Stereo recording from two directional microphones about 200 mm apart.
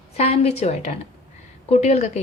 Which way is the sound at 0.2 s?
30° left (ahead or behind).